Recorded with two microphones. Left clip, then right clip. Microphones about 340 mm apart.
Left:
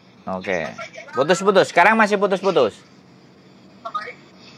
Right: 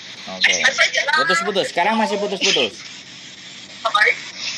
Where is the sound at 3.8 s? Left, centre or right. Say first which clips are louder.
Right 13 dB; right.